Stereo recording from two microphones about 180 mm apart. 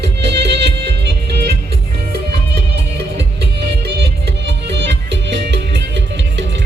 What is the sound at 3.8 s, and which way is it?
Music, 70° right (ahead or behind).